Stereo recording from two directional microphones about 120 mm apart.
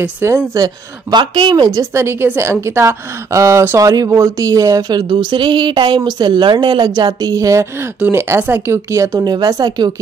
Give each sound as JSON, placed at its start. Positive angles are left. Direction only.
{"t": 0.0, "sound": "speech", "side_deg": -20}
{"t": 1.1, "sound": "speech", "side_deg": -40}